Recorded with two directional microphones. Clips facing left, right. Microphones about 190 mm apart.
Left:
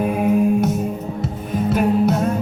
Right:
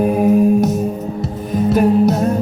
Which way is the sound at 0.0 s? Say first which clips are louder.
Right 4 dB; 40° right (ahead or behind).